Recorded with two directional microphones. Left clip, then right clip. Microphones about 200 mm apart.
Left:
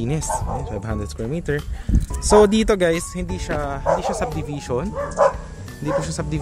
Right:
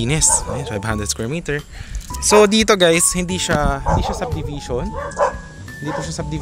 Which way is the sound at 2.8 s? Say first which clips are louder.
Right 6 dB; 15° right (ahead or behind).